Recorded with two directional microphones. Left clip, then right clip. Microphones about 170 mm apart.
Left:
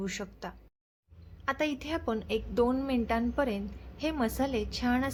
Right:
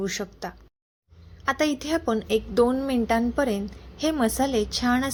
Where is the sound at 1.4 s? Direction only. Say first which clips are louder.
Right 7 dB; 20° right (ahead or behind).